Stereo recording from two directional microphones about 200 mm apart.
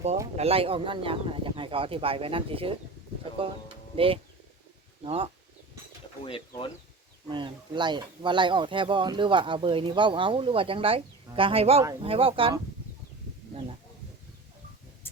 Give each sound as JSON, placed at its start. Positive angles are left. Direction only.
{"t": 0.3, "sound": "speech", "side_deg": -30}
{"t": 6.2, "sound": "speech", "side_deg": 25}
{"t": 7.3, "sound": "speech", "side_deg": -25}